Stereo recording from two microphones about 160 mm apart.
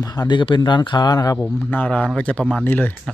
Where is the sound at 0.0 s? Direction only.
25° left (ahead or behind).